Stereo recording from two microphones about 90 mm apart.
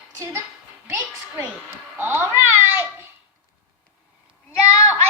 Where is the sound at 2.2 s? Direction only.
25° right (ahead or behind).